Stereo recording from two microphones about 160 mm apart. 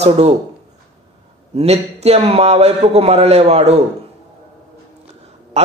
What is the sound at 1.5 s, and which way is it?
A man's voice, 40° right (ahead or behind).